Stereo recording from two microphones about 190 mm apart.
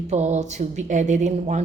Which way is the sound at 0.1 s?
35° right (ahead or behind).